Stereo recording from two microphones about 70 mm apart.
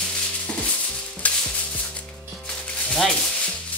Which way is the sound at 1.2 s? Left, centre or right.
Left.